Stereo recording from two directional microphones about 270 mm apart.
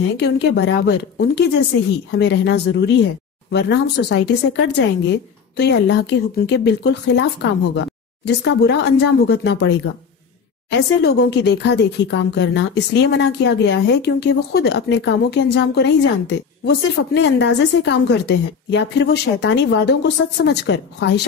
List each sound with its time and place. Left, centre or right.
0.2 s speech: left
8.3 s speech: left